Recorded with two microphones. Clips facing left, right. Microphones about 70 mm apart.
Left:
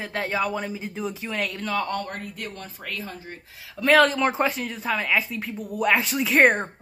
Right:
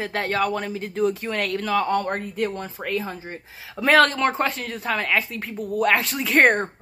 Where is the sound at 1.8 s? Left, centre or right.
Centre.